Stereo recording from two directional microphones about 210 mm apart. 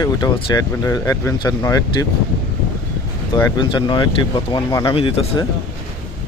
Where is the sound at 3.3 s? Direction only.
20° left (ahead or behind).